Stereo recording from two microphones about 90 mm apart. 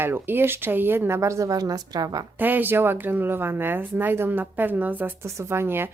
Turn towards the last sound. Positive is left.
turn(degrees=-25)  # may be behind; listen again after turning